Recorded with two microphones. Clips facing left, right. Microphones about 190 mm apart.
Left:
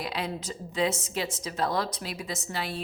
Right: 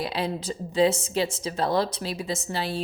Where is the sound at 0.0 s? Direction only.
30° right (ahead or behind).